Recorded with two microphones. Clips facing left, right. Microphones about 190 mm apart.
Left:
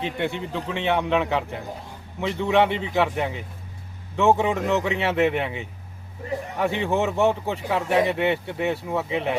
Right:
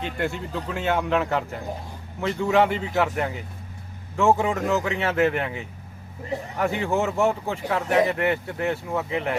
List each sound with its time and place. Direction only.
0.0 s speech: centre (ahead or behind)
6.8 s speech: centre (ahead or behind)